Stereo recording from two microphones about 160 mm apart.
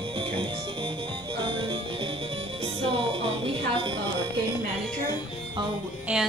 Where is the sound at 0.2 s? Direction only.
30° right (ahead or behind).